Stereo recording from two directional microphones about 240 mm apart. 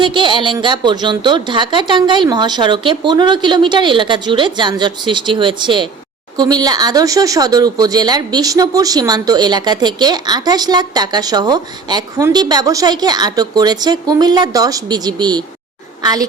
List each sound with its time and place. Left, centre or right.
0.0 s a woman's voice: centre